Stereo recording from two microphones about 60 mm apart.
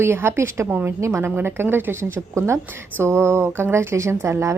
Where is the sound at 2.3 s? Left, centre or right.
Right.